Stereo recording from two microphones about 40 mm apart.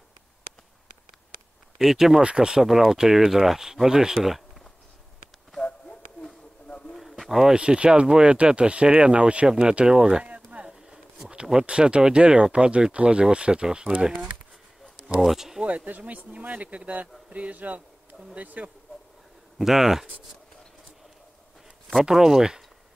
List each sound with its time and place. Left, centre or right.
1.8 s speech: centre
2.2 s speech: right
2.6 s speech: centre
5.6 s a sound: left
7.0 s bird: centre
7.5 s speech: right
10.7 s a sound: centre
11.5 s speech: right
15.1 s speech: centre
15.6 s speech: right
19.6 s speech: centre
22.1 s speech: centre